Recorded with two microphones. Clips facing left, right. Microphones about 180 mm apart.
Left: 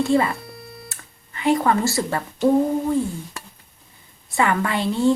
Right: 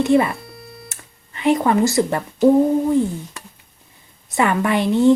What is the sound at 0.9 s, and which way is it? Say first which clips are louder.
Music: right 1 dB; 20° right (ahead or behind).